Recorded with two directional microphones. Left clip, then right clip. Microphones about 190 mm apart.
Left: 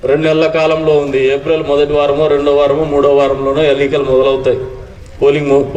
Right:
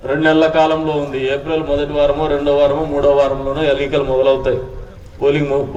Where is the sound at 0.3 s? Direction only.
60° right (ahead or behind).